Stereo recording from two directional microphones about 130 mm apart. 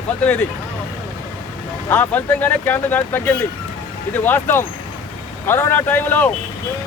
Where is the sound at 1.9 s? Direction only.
15° left (ahead or behind).